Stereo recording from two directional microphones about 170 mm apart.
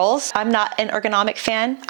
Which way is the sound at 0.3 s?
15° right (ahead or behind).